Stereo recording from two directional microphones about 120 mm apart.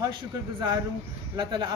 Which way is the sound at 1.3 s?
40° right (ahead or behind).